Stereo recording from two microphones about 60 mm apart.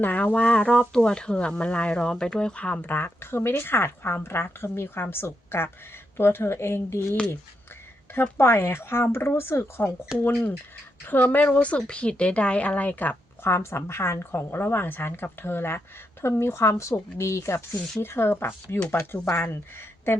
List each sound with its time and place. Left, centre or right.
0.0 s a woman's voice: left
0.3 s speech: centre; by 7.2 s left
8.4 s speech: left
10.1 s speech: centre
11.0 s speech: left
13.4 s a woman's voice: left